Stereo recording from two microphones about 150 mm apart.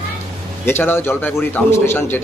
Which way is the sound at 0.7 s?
15° left (ahead or behind).